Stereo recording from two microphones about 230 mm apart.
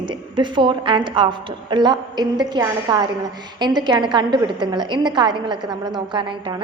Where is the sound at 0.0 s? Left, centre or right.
Centre.